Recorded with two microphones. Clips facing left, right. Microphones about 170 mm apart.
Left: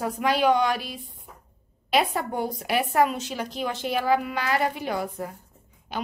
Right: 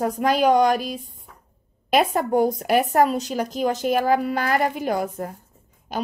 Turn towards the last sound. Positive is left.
turn(degrees=-45)  # may be behind; listen again after turning